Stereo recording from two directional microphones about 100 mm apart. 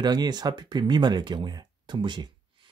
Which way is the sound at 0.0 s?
45° right (ahead or behind).